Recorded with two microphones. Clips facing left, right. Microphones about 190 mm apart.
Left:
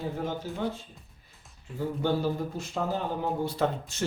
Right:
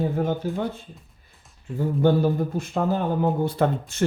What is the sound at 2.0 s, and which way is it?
Speech, 55° right (ahead or behind).